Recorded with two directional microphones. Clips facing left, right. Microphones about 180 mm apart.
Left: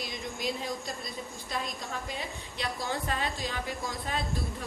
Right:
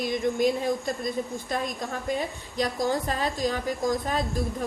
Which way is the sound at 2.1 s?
40° right (ahead or behind).